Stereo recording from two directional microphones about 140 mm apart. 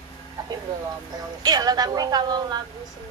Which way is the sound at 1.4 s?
30° right (ahead or behind).